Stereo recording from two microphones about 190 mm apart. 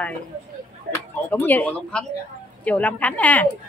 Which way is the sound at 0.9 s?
50° right (ahead or behind).